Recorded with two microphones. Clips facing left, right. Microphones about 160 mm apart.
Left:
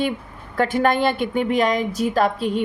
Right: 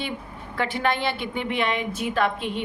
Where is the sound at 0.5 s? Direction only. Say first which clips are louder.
Left 6 dB; 45° left (ahead or behind).